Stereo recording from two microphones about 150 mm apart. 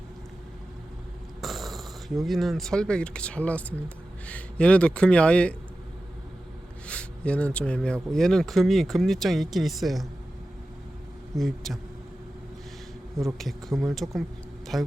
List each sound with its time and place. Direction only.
1.4 s speech: centre (ahead or behind)
6.8 s speech: 5° left (ahead or behind)
11.3 s speech: centre (ahead or behind)
13.1 s speech: centre (ahead or behind)